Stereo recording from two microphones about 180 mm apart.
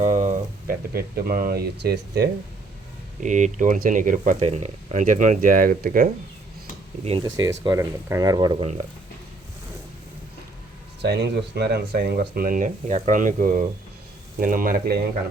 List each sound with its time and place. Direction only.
0.0 s a sound: 40° right (ahead or behind)
0.7 s speech: 55° right (ahead or behind)
3.2 s speech: 40° right (ahead or behind)
7.0 s speech: 35° right (ahead or behind)
7.3 s speech: 20° right (ahead or behind)
11.0 s speech: 70° right (ahead or behind)